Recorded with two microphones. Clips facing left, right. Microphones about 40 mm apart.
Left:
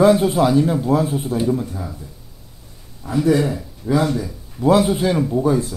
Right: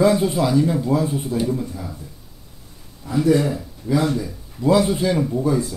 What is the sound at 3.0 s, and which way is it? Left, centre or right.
Speech, left.